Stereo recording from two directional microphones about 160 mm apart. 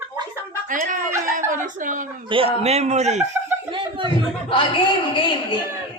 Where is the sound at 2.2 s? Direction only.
35° right (ahead or behind).